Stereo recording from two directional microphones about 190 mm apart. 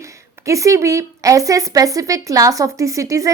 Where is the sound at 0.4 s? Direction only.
15° right (ahead or behind).